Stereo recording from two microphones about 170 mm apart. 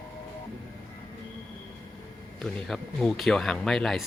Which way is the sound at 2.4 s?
5° left (ahead or behind).